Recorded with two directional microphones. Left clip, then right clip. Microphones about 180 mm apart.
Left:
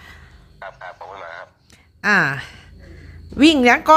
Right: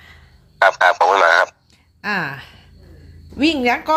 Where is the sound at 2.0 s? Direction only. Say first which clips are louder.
Left 6 dB; 35° left (ahead or behind).